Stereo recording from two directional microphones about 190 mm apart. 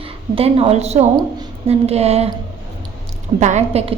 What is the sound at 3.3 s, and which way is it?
Speech, 35° right (ahead or behind).